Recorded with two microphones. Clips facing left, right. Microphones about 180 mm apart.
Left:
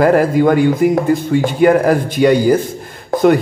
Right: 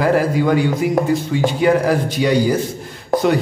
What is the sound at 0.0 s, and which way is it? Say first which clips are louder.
A man's voice: left 5 dB; 55° left (ahead or behind).